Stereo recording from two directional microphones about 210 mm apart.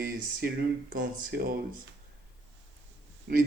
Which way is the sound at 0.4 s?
50° right (ahead or behind).